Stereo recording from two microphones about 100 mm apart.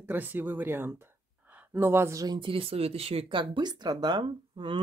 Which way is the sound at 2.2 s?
45° right (ahead or behind).